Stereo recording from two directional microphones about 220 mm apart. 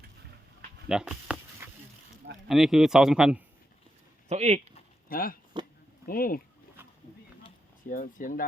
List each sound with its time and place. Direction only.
0.9 s a sound: 5° right (ahead or behind)
2.5 s speech: centre (ahead or behind)
4.3 s speech: 30° right (ahead or behind)
4.7 s a sound: 40° left (ahead or behind)
6.1 s speech: 40° left (ahead or behind)
7.9 s speech: 35° left (ahead or behind)